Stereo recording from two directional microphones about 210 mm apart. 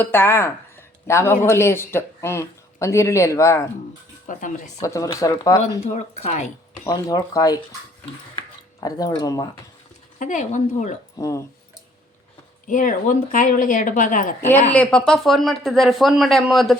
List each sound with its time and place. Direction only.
0.0 s speech: 10° left (ahead or behind)
4.3 s speech: 40° left (ahead or behind)
4.8 s speech: 15° left (ahead or behind)
5.8 s speech: 35° left (ahead or behind)
6.8 s speech: 20° left (ahead or behind)
8.8 s speech: 15° left (ahead or behind)
10.2 s speech: 35° left (ahead or behind)
11.2 s speech: 15° left (ahead or behind)
12.6 s speech: 40° left (ahead or behind)
14.7 s speech: 5° left (ahead or behind)